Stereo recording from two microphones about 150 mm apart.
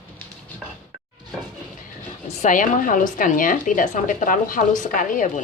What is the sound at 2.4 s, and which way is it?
Speech, 60° left (ahead or behind).